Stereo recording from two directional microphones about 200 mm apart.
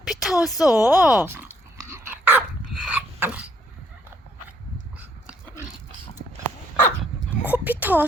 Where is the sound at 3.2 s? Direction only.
5° right (ahead or behind).